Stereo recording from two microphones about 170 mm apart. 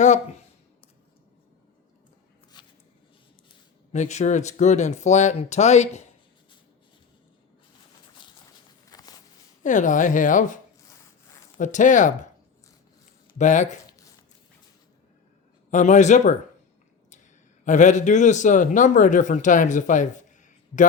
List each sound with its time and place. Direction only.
0.0 s speech: 45° left (ahead or behind)
2.5 s a sound: 25° left (ahead or behind)
3.9 s a man's voice: 45° left (ahead or behind)
8.9 s walk: 20° left (ahead or behind)
9.6 s a man's voice: 50° left (ahead or behind)
13.4 s a man's voice: 45° left (ahead or behind)
15.7 s a man's voice: 45° left (ahead or behind)
17.7 s a man's voice: 45° left (ahead or behind)